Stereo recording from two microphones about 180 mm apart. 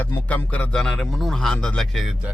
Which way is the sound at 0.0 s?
10° left (ahead or behind).